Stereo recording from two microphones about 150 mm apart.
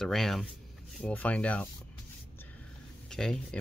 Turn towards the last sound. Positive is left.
turn(degrees=5)  # may be behind; listen again after turning